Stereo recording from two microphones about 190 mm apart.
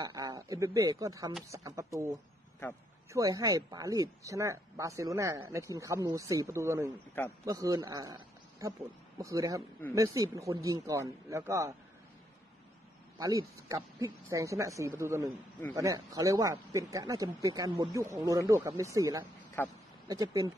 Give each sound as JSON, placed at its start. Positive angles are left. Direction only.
{"t": 0.0, "sound": "a man's voice", "side_deg": -20}
{"t": 13.2, "sound": "speech", "side_deg": -15}
{"t": 19.6, "sound": "speech", "side_deg": 10}
{"t": 20.1, "sound": "speech", "side_deg": -20}